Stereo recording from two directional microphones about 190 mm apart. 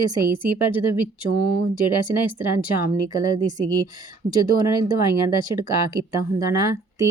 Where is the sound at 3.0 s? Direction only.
20° right (ahead or behind).